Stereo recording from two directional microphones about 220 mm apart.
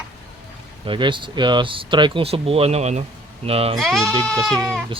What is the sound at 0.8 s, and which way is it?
Speech, 20° right (ahead or behind).